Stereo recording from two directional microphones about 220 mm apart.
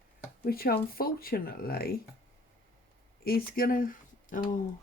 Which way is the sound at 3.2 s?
45° left (ahead or behind).